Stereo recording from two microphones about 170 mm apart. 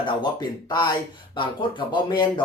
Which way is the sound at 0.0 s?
25° left (ahead or behind).